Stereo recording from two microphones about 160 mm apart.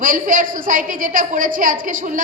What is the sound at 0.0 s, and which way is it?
A woman's voice, 60° right (ahead or behind).